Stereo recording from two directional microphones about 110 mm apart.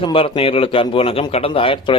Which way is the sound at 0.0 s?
55° left (ahead or behind).